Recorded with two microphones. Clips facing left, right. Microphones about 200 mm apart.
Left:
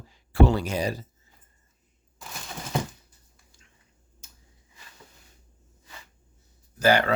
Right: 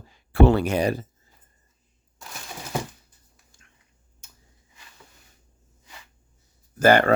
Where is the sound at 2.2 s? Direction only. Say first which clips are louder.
Even; centre (ahead or behind).